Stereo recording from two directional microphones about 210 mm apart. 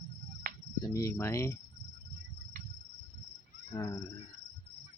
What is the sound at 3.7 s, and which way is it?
Cricket, 15° left (ahead or behind).